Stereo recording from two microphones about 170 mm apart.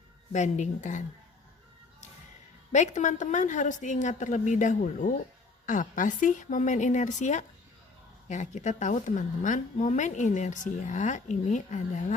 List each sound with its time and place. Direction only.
0.3 s a woman's voice: 45° left (ahead or behind)
2.7 s a woman's voice: 45° left (ahead or behind)